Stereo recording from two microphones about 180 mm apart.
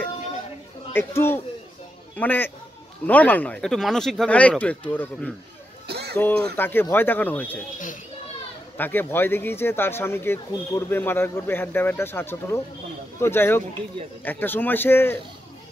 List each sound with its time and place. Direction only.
0.9 s speech: 10° left (ahead or behind)
5.9 s a sound: 65° right (ahead or behind)
6.1 s speech: 10° left (ahead or behind)
8.7 s speech: 10° left (ahead or behind)